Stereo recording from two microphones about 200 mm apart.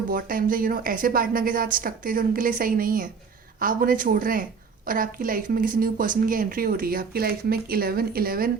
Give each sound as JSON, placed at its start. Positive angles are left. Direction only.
{"t": 0.1, "sound": "speech", "side_deg": -45}